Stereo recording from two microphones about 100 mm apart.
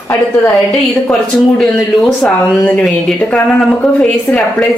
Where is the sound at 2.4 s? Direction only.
15° left (ahead or behind).